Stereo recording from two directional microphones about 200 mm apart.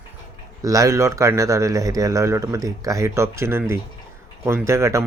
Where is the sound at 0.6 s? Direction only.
15° right (ahead or behind).